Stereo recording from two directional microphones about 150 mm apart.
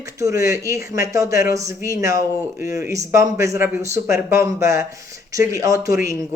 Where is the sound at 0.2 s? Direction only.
20° right (ahead or behind).